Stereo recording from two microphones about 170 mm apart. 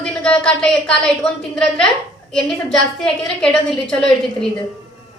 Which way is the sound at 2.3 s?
5° left (ahead or behind).